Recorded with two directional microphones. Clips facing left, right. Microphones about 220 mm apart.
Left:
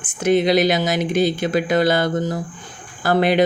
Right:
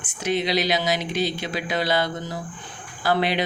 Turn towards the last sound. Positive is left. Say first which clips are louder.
# left 6 dB
turn(degrees=50)  # may be behind; listen again after turning